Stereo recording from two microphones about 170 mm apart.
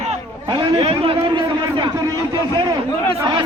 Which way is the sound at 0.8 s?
30° right (ahead or behind).